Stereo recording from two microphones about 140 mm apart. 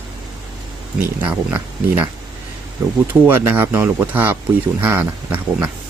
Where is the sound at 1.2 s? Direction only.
10° right (ahead or behind).